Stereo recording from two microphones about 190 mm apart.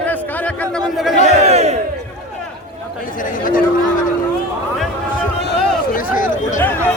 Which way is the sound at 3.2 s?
45° left (ahead or behind).